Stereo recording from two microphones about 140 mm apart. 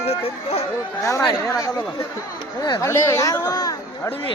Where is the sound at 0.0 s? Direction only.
45° left (ahead or behind).